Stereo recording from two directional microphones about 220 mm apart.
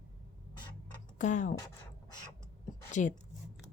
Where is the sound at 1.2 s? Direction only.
35° left (ahead or behind).